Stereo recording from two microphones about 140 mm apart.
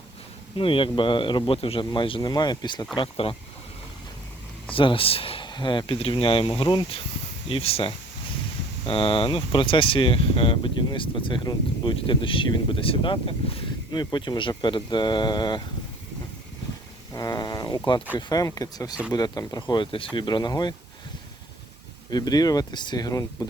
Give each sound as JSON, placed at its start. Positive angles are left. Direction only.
{"t": 0.5, "sound": "speech", "side_deg": 35}
{"t": 4.7, "sound": "speech", "side_deg": 40}
{"t": 17.2, "sound": "speech", "side_deg": 30}
{"t": 22.1, "sound": "speech", "side_deg": 30}